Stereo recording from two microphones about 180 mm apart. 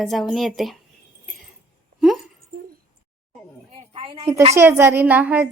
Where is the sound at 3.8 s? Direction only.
30° right (ahead or behind).